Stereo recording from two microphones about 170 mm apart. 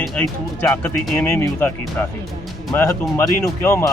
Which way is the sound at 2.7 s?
15° left (ahead or behind).